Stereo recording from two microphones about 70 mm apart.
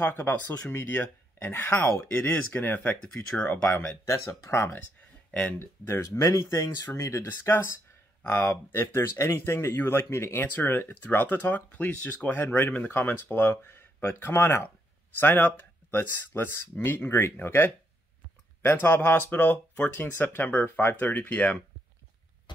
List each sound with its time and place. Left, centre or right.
0.0 s speech: left
4.1 s speech: left
5.3 s speech: centre
6.1 s speech: left
8.2 s speech: left